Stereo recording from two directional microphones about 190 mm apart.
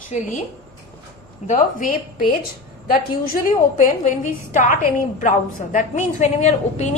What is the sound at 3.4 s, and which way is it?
A woman's voice, 40° left (ahead or behind).